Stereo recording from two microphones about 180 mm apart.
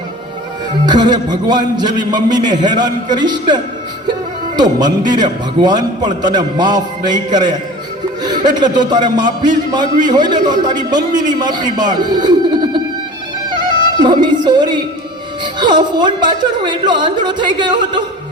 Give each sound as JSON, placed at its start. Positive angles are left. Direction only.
{"t": 0.9, "sound": "a man's voice", "side_deg": -25}
{"t": 4.8, "sound": "a man's voice", "side_deg": -25}
{"t": 8.5, "sound": "a man's voice", "side_deg": -25}
{"t": 13.5, "sound": "music", "side_deg": -25}
{"t": 15.5, "sound": "a man's voice", "side_deg": -25}